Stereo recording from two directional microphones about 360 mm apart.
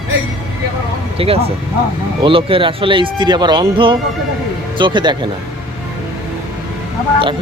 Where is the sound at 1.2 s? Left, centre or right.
Centre.